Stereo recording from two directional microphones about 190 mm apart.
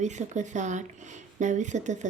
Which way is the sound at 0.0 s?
40° right (ahead or behind).